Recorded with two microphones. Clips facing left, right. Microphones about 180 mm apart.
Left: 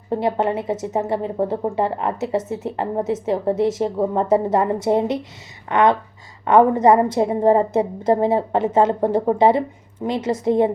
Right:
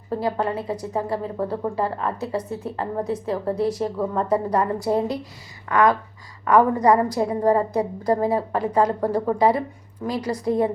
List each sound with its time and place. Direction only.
0.1 s a woman's voice: 25° left (ahead or behind)